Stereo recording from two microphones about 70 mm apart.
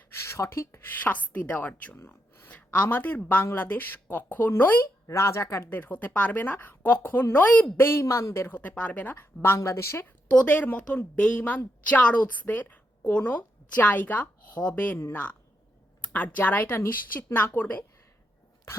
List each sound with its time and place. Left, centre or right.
0.1 s a woman's voice: left
5.0 s a woman's voice: left
5.7 s a woman's voice: left
10.2 s a woman's voice: left
11.3 s a woman's voice: left
14.9 s speech: left
16.1 s a woman's voice: left